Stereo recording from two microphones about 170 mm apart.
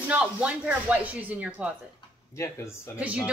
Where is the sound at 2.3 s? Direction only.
15° left (ahead or behind).